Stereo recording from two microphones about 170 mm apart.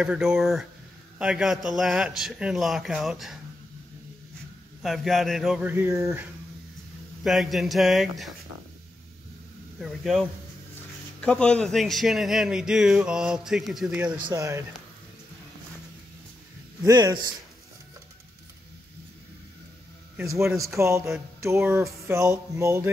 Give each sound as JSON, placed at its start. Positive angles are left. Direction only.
{"t": 0.0, "sound": "speech", "side_deg": -5}
{"t": 4.8, "sound": "speech", "side_deg": 0}
{"t": 7.2, "sound": "speech", "side_deg": 0}
{"t": 9.8, "sound": "speech", "side_deg": 0}
{"t": 14.1, "sound": "speech", "side_deg": -25}
{"t": 16.8, "sound": "speech", "side_deg": -25}
{"t": 20.2, "sound": "speech", "side_deg": -15}